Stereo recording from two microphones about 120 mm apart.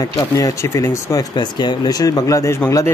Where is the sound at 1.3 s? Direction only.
40° left (ahead or behind).